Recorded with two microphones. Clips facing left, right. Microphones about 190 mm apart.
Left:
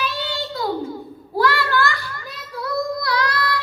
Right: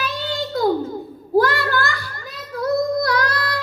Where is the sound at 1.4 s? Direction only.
45° right (ahead or behind).